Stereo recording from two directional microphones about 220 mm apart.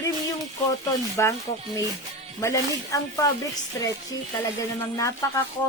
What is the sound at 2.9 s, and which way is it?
Speech, 15° left (ahead or behind).